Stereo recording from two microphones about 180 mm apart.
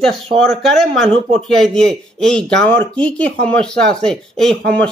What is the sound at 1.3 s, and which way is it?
Speech, 5° left (ahead or behind).